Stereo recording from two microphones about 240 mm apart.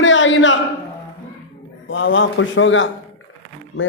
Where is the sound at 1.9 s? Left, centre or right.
Left.